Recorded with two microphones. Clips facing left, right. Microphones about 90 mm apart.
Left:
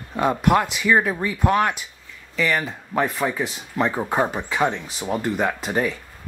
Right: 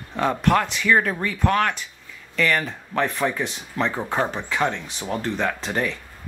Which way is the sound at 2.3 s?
5° left (ahead or behind).